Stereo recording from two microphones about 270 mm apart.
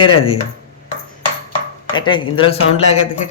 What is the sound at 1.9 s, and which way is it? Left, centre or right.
Speech, centre.